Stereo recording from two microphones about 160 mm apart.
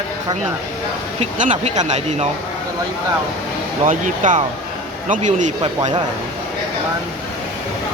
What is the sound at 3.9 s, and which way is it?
Speech, 50° right (ahead or behind).